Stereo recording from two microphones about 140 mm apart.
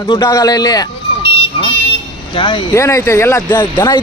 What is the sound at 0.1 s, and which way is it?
Speech, 25° left (ahead or behind).